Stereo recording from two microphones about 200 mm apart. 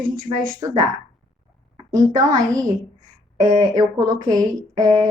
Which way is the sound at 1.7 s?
20° right (ahead or behind).